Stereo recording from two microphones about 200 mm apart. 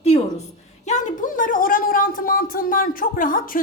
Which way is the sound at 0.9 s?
40° left (ahead or behind).